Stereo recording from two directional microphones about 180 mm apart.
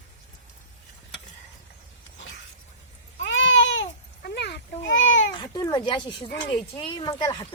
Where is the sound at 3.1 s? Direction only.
90° left.